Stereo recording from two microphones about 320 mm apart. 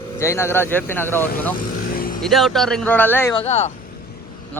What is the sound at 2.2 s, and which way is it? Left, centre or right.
Speech, centre.